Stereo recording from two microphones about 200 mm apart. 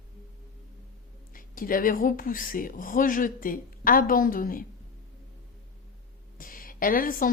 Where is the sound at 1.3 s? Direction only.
45° left (ahead or behind).